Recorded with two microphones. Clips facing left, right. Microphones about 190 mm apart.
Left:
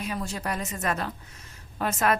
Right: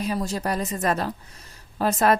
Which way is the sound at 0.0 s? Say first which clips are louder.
Right 5 dB; 35° right (ahead or behind).